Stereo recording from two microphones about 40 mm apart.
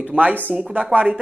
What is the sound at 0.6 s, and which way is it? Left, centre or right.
Speech, right.